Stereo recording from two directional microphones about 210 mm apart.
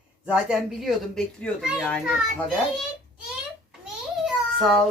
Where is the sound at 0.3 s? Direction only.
5° right (ahead or behind).